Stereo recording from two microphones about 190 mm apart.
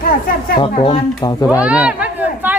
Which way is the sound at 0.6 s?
30° left (ahead or behind).